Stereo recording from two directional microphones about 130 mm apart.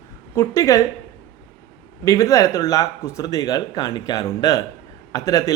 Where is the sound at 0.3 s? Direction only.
25° left (ahead or behind).